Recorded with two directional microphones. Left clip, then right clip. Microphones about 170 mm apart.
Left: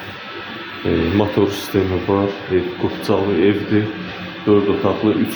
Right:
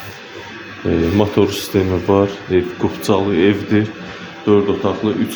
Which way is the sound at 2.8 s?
40° right (ahead or behind).